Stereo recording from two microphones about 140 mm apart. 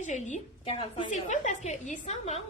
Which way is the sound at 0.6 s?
40° left (ahead or behind).